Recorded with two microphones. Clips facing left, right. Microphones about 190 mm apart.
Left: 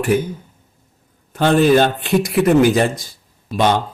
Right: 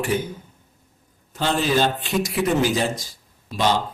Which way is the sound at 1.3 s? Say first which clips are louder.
Left 8 dB; 60° left (ahead or behind).